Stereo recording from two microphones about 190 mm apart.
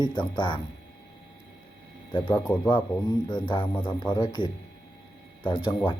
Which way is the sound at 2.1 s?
20° left (ahead or behind).